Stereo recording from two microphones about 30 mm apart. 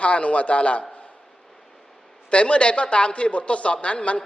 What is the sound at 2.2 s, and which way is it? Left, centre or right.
A man's voice, left.